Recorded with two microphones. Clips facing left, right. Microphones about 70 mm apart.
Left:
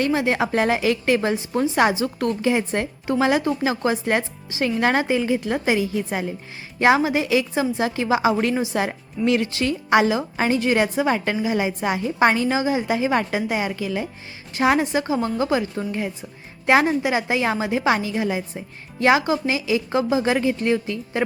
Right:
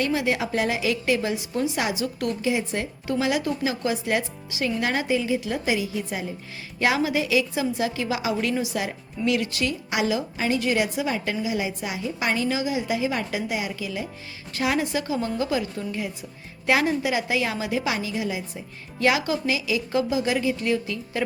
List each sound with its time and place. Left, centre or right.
0.0 s speech: left
6.7 s a woman's voice: left
16.6 s speech: left
18.9 s speech: left